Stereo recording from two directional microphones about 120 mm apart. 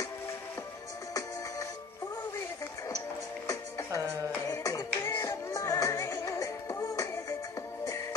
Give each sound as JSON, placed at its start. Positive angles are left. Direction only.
{"t": 3.4, "sound": "music", "side_deg": 25}